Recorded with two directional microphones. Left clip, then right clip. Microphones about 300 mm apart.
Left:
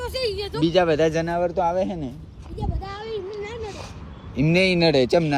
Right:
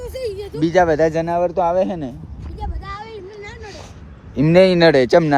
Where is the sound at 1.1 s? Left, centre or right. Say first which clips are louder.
Right 5 dB; centre.